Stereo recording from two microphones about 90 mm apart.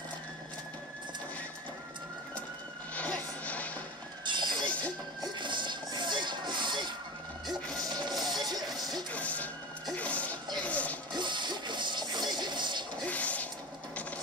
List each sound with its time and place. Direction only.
2.9 s music: 15° left (ahead or behind)
4.2 s music: 60° right (ahead or behind)
4.6 s music: 15° left (ahead or behind)
5.4 s a sound: 60° right (ahead or behind)
7.4 s music: 5° left (ahead or behind)
7.8 s music: 50° right (ahead or behind)
8.2 s music: centre (ahead or behind)
9.1 s music: 15° left (ahead or behind)
11.1 s music: 55° right (ahead or behind)
13.0 s a sound: 15° left (ahead or behind)